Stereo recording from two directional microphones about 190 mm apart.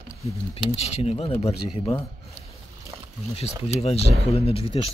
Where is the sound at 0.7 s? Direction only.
35° left (ahead or behind).